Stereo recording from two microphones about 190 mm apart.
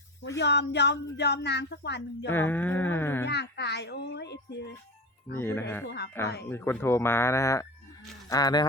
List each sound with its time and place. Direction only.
0.3 s speech: 65° left (ahead or behind)
2.3 s speech: 10° left (ahead or behind)
3.2 s speech: 60° left (ahead or behind)
5.4 s speech: 10° left (ahead or behind)